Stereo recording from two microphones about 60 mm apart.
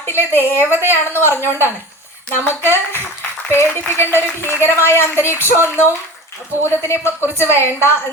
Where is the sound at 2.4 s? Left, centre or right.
Left.